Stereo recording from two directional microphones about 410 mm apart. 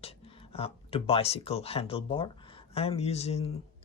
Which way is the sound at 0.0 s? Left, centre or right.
Centre.